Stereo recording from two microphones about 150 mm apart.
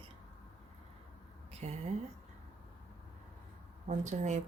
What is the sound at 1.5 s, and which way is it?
Speech, 45° right (ahead or behind).